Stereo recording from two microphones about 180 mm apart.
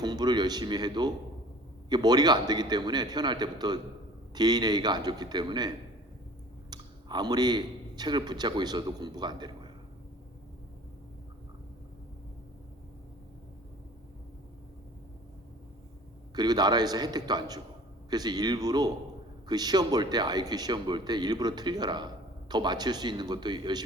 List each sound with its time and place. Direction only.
0.0 s speech: 20° right (ahead or behind)
16.3 s speech: 20° right (ahead or behind)